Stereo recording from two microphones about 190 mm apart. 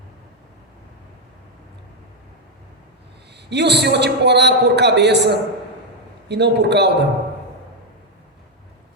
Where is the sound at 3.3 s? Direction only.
60° right (ahead or behind).